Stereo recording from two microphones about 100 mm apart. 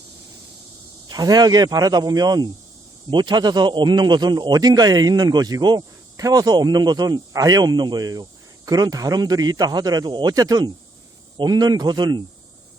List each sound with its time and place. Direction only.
1.0 s a man's voice: 40° right (ahead or behind)